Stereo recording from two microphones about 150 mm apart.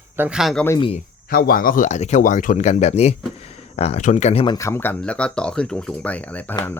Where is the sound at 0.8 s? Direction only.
40° left (ahead or behind).